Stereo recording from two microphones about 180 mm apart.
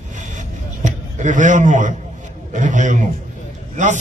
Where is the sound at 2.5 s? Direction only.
45° right (ahead or behind).